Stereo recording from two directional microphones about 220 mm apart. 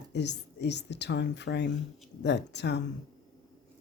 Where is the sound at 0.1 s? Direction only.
50° left (ahead or behind).